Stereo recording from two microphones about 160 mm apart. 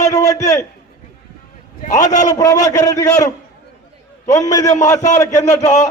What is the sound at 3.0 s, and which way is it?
Speech, 20° left (ahead or behind).